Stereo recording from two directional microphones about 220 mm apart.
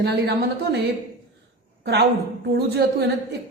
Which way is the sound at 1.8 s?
50° right (ahead or behind).